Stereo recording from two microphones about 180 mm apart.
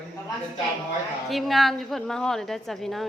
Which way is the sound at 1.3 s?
Centre (ahead or behind).